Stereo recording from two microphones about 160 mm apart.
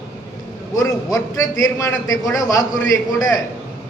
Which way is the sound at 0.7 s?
20° left (ahead or behind).